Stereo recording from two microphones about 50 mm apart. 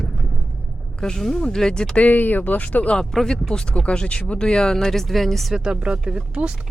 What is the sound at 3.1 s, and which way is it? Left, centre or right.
Speech, centre.